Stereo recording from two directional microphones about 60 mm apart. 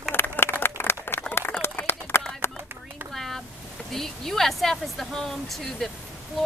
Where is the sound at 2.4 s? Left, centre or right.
Left.